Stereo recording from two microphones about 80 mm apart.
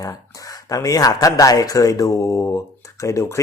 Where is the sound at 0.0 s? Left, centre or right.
Left.